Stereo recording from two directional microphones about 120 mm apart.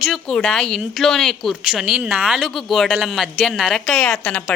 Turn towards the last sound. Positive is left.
turn(degrees=5)  # may be behind; listen again after turning